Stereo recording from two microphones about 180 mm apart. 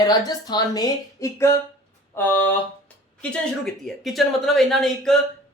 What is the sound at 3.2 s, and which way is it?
Speech, 5° left (ahead or behind).